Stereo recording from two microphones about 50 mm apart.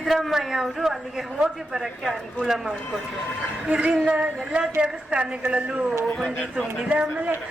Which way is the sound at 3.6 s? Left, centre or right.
Right.